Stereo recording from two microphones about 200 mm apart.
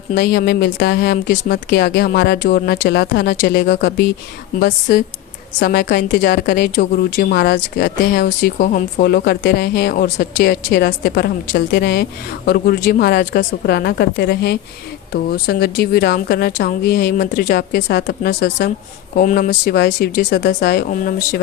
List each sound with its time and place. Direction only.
0.1 s speech: 50° left (ahead or behind)
5.6 s a woman's voice: 45° left (ahead or behind)
5.9 s speech: 60° left (ahead or behind)
8.5 s a woman's voice: 40° left (ahead or behind); by 18.7 s 60° left (ahead or behind)
19.1 s a woman's voice: 45° left (ahead or behind)
19.5 s a woman's voice: 55° left (ahead or behind)